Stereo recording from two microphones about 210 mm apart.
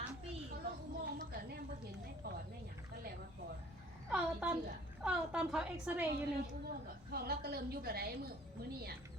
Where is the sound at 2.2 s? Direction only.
45° right (ahead or behind).